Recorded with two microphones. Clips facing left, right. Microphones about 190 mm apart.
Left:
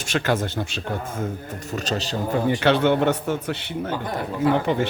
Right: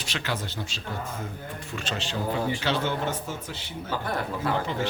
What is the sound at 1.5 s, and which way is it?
Speech, 40° left (ahead or behind).